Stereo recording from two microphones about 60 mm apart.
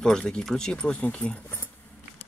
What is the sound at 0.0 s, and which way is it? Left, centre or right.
Speech, centre.